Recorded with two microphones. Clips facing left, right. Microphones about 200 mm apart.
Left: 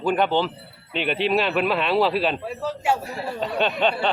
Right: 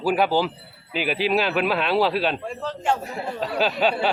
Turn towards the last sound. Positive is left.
turn(degrees=-5)  # may be behind; listen again after turning